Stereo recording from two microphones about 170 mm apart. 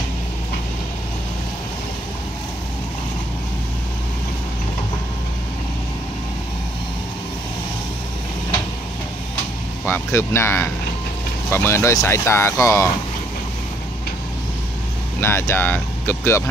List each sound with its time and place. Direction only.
9.8 s speech: 15° left (ahead or behind)
15.1 s speech: 15° left (ahead or behind)